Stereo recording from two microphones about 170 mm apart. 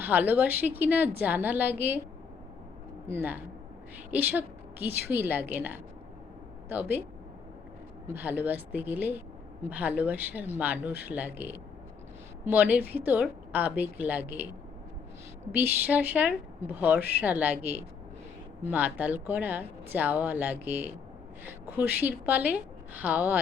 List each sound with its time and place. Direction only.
0.0 s a woman's voice: 10° right (ahead or behind)
3.1 s a woman's voice: 15° right (ahead or behind)
8.0 s a woman's voice: 10° right (ahead or behind)
15.5 s a woman's voice: 10° right (ahead or behind)